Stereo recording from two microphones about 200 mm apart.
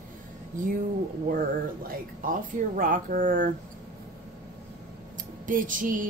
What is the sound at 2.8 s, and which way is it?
Speech, 45° right (ahead or behind).